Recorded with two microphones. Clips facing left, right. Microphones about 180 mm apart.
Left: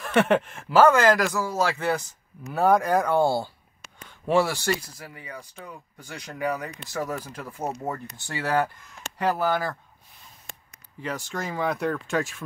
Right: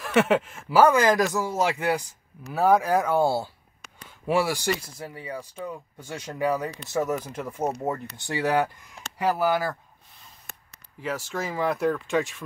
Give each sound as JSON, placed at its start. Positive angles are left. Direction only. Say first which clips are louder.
{"t": 0.0, "sound": "speech", "louder": "even", "side_deg": -5}
{"t": 2.4, "sound": "speech", "louder": "even", "side_deg": 0}
{"t": 4.9, "sound": "speech", "louder": "right 5 dB", "side_deg": -30}
{"t": 11.0, "sound": "speech", "louder": "right 1 dB", "side_deg": -5}